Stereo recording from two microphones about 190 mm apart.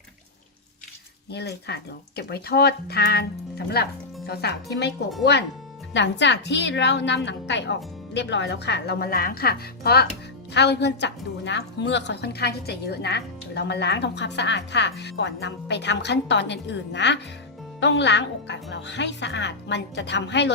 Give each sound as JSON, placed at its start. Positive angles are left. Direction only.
{"t": 1.3, "sound": "a woman's voice", "side_deg": 60}
{"t": 5.9, "sound": "a woman's voice", "side_deg": 70}